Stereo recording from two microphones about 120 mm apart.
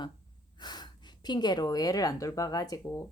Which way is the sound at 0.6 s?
35° left (ahead or behind).